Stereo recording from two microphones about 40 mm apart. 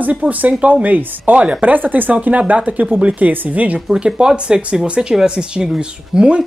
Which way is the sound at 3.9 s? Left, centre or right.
Right.